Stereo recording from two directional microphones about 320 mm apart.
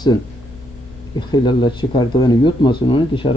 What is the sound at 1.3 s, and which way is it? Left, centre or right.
Speech, centre.